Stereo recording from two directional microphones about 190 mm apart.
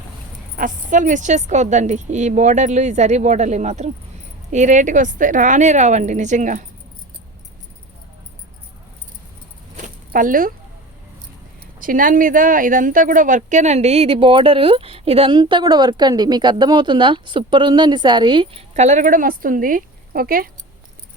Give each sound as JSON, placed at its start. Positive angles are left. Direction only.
{"t": 0.5, "sound": "a woman's voice", "side_deg": -45}
{"t": 9.7, "sound": "keys jangling", "side_deg": -45}
{"t": 11.8, "sound": "speech", "side_deg": -45}
{"t": 18.7, "sound": "speech", "side_deg": -40}